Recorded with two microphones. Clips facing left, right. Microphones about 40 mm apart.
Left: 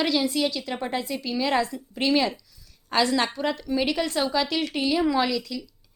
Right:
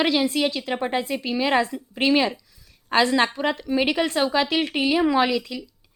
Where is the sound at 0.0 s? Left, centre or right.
Right.